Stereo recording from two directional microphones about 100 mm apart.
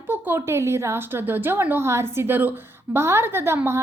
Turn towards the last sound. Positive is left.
turn(degrees=-25)  # may be behind; listen again after turning